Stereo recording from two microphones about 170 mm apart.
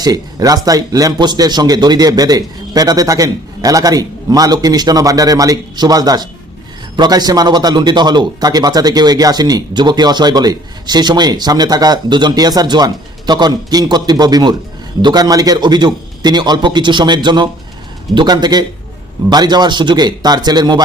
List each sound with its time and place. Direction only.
0.0 s a man's voice: 20° right (ahead or behind)